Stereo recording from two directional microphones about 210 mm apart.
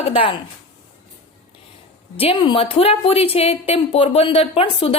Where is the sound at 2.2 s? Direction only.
25° left (ahead or behind).